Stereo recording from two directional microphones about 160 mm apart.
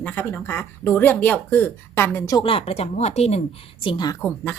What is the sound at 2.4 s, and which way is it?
Speech, 40° left (ahead or behind).